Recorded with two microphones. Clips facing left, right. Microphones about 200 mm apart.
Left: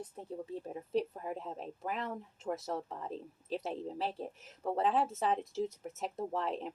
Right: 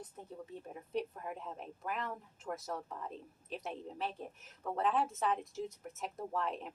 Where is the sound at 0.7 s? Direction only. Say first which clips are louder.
Left 4 dB; 30° left (ahead or behind).